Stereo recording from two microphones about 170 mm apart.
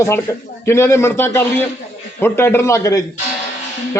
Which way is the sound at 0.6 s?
15° left (ahead or behind).